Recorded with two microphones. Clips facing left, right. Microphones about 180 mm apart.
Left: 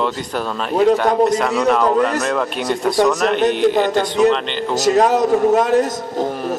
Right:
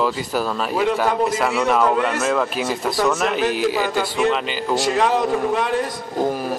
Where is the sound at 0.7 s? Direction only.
40° left (ahead or behind).